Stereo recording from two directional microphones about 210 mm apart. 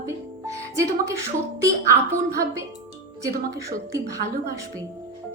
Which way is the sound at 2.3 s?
15° right (ahead or behind).